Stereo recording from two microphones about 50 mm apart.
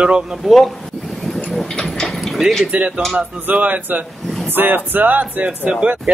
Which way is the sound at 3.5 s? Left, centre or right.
Right.